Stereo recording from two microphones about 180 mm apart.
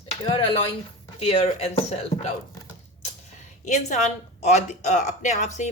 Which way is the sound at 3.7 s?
40° left (ahead or behind).